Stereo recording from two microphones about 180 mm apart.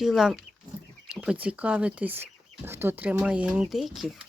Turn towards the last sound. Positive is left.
turn(degrees=0)  # may be behind; listen again after turning